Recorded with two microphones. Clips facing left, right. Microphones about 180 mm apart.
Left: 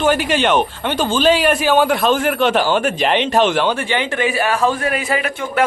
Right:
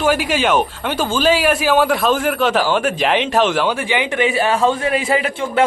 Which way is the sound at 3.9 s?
15° right (ahead or behind).